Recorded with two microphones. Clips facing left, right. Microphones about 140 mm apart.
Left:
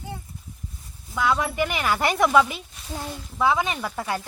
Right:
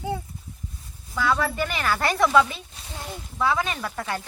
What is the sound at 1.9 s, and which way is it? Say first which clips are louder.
Speech: even; 20° left (ahead or behind).